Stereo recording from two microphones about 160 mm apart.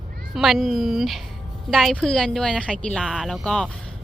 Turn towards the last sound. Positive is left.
turn(degrees=5)  # may be behind; listen again after turning